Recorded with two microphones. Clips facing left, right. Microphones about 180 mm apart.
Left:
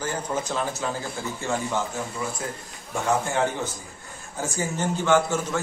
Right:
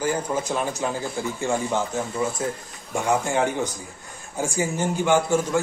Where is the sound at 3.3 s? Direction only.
15° right (ahead or behind).